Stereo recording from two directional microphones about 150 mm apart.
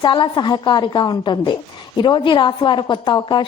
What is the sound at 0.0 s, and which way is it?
A woman's voice, 30° left (ahead or behind).